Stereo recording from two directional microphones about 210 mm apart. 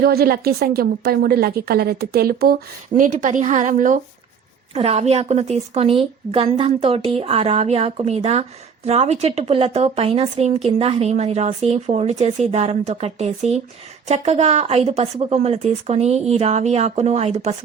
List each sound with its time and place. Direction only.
0.0 s a woman's voice: 45° right (ahead or behind); by 17.5 s 30° right (ahead or behind)